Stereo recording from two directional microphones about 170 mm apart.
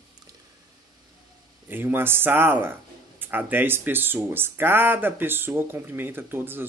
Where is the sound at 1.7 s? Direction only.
10° right (ahead or behind).